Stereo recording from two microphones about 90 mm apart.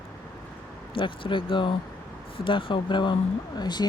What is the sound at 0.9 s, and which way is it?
Speech, 65° left (ahead or behind).